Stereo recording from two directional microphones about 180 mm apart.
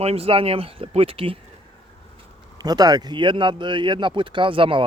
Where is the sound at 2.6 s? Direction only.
20° right (ahead or behind).